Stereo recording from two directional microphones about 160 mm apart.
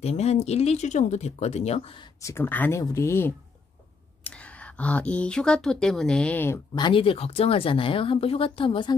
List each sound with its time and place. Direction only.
0.0 s speech: 40° left (ahead or behind)
2.2 s speech: 15° left (ahead or behind)
6.7 s speech: 30° left (ahead or behind)